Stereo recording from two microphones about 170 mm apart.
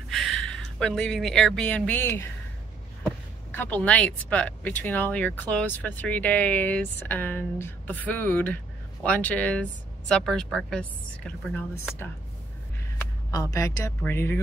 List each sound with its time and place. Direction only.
0.1 s speech: centre (ahead or behind)
3.5 s speech: 10° left (ahead or behind)
13.3 s speech: 20° left (ahead or behind)